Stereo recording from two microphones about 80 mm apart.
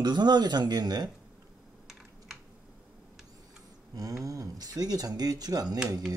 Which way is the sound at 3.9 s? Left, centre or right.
Right.